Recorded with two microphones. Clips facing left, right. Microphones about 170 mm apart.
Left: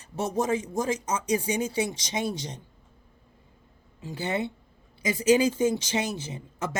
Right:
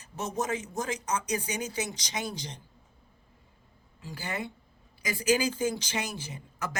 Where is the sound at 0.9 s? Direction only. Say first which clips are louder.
Left 4 dB; 25° left (ahead or behind).